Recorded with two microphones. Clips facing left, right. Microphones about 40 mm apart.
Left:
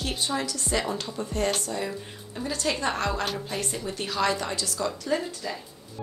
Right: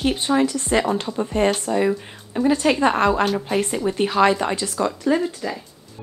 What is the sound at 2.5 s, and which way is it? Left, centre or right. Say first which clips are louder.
Speech: right 8 dB; right.